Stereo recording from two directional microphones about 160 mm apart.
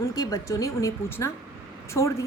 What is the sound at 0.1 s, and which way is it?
A woman's voice, 20° left (ahead or behind).